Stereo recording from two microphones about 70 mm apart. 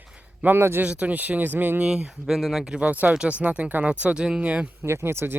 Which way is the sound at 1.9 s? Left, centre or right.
Centre.